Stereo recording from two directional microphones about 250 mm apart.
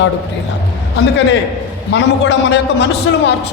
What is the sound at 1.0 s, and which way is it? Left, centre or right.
A man's voice, left.